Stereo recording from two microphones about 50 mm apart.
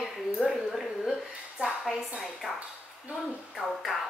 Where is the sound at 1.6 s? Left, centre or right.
Right.